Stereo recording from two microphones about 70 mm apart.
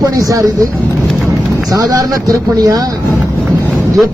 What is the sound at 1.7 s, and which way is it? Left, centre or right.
Speech, right.